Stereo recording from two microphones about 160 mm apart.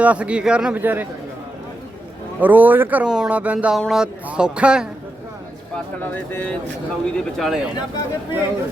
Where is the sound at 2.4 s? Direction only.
10° right (ahead or behind).